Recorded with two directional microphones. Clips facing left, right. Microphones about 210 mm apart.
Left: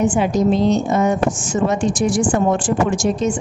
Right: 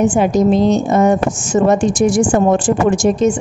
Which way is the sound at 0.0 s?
45° right (ahead or behind).